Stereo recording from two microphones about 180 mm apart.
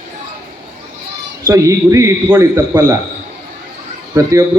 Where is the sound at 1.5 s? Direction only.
15° right (ahead or behind).